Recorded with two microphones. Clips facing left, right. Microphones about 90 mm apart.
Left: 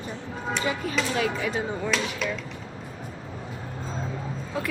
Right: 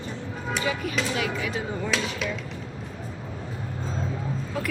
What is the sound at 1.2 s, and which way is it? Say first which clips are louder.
Speech: left 2 dB; 35° left (ahead or behind).